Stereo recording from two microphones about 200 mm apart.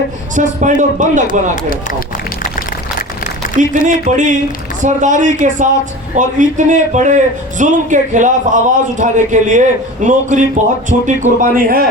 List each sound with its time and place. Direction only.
0.3 s a man's voice: 40° right (ahead or behind)
1.3 s speech: 45° left (ahead or behind)
3.6 s a man's voice: 40° right (ahead or behind)